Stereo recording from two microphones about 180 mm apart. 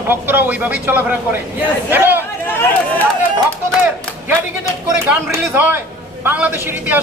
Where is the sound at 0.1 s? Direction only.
10° right (ahead or behind).